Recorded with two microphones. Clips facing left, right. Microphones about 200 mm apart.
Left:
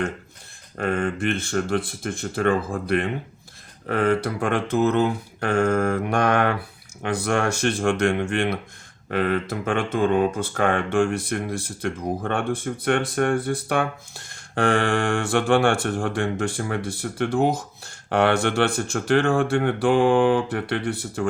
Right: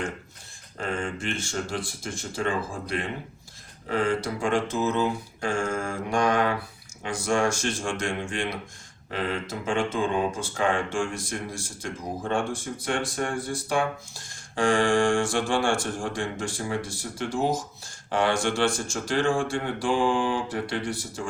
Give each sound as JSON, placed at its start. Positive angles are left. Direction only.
{"t": 0.8, "sound": "speech", "side_deg": 60}